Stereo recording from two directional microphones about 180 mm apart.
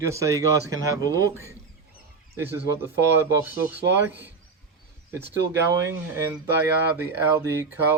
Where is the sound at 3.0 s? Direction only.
70° right (ahead or behind).